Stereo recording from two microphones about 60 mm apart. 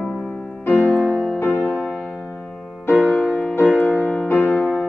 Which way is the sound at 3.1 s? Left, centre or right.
Left.